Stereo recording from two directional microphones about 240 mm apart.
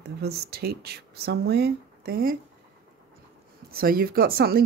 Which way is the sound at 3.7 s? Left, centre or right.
Right.